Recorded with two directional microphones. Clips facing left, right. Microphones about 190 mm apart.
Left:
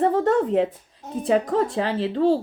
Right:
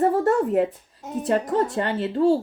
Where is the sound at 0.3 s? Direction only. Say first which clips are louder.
Even; 5° right (ahead or behind).